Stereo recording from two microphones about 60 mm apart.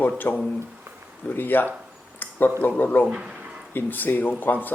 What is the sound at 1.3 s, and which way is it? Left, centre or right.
Speech, left.